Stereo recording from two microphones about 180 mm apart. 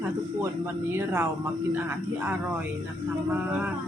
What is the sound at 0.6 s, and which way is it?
Speech, 10° right (ahead or behind).